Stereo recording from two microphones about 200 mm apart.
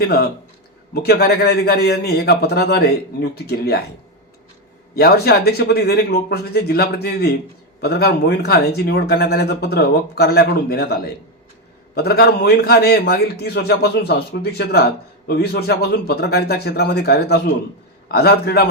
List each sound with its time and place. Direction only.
0.0 s speech: 50° left (ahead or behind)
4.9 s speech: 50° left (ahead or behind)